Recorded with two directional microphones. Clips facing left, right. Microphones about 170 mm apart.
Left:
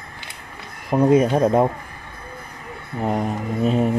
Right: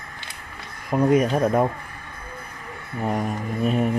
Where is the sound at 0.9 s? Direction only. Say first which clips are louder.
Left 3 dB; 25° left (ahead or behind).